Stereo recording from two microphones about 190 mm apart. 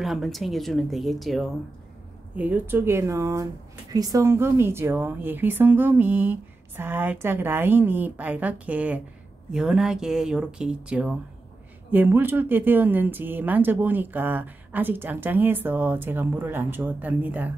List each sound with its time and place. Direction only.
0.0 s speech: centre (ahead or behind)